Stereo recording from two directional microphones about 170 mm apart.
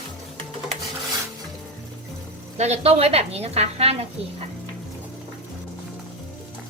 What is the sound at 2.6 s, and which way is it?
A woman's voice, 40° right (ahead or behind).